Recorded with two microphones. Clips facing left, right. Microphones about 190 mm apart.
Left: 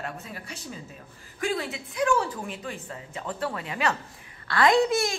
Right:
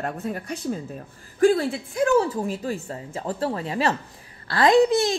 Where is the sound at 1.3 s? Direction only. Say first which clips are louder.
Right 11 dB; 40° right (ahead or behind).